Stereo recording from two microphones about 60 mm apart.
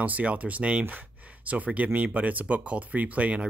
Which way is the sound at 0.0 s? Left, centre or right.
Right.